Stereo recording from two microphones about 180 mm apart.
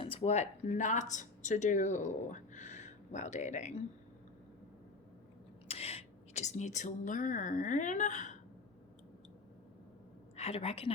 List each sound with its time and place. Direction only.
0.0 s speech: 35° left (ahead or behind)
5.6 s speech: 35° left (ahead or behind)
10.3 s a woman's voice: 35° left (ahead or behind)